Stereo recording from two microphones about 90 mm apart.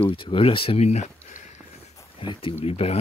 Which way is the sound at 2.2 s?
75° left (ahead or behind).